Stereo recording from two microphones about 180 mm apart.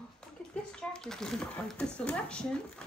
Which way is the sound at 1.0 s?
5° left (ahead or behind).